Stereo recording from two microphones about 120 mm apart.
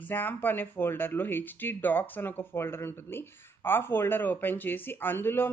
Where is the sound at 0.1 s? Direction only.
15° left (ahead or behind).